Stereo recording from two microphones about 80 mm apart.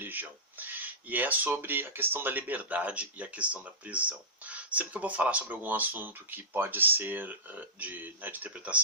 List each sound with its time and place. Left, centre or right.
0.0 s speech: right